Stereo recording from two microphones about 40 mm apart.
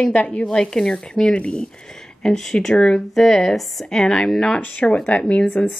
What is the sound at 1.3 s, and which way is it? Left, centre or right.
Speech, left.